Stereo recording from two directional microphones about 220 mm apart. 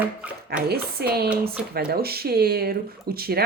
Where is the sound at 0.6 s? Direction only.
45° right (ahead or behind).